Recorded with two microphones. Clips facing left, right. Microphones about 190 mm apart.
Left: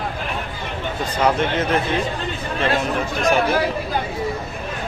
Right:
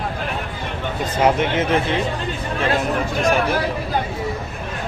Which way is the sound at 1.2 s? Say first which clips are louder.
Right 2 dB; 15° right (ahead or behind).